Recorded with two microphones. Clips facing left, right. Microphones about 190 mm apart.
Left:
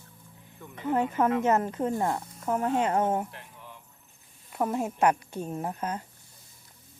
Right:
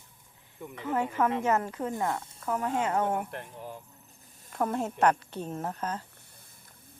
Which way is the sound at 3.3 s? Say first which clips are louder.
Right 7 dB; 50° right (ahead or behind).